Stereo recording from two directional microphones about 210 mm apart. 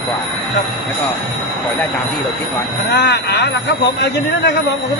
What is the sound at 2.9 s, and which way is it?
Speech, 50° left (ahead or behind).